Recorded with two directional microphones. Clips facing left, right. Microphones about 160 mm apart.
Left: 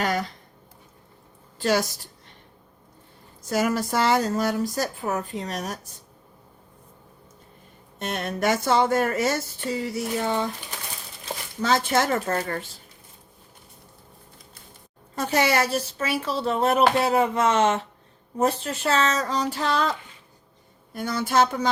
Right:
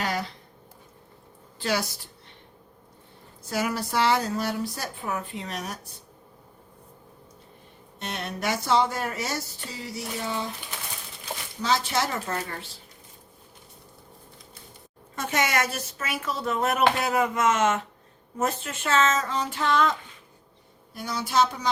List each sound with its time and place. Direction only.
0.0 s a sound: 45° left (ahead or behind)
1.5 s a woman's voice: 45° left (ahead or behind)
3.5 s speech: 45° left (ahead or behind)
7.9 s speech: 50° left (ahead or behind)
11.6 s speech: 50° left (ahead or behind)
15.1 s speech: 35° left (ahead or behind)
20.9 s speech: 55° left (ahead or behind)